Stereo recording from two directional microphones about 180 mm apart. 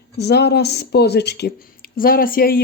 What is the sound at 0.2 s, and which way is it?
Speech, 65° left (ahead or behind).